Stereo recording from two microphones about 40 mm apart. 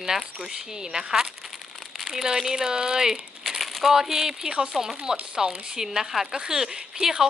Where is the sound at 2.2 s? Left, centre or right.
Centre.